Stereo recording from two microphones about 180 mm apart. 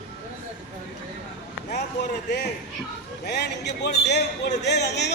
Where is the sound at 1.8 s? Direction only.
65° left (ahead or behind).